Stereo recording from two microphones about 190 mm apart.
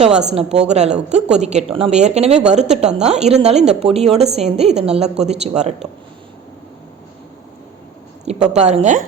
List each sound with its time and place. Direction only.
0.3 s speech: 35° right (ahead or behind)
8.2 s a woman's voice: 35° right (ahead or behind)